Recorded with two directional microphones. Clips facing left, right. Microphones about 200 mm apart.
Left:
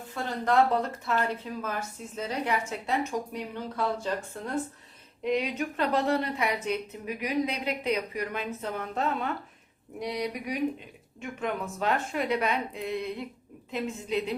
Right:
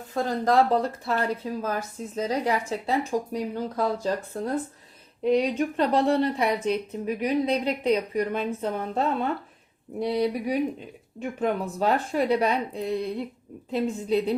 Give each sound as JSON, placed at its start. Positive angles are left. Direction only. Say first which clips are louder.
{"t": 0.1, "sound": "a woman's voice", "louder": "right 4 dB", "side_deg": -35}